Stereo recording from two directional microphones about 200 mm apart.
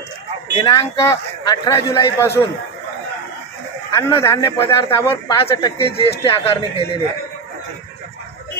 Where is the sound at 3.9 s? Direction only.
15° left (ahead or behind).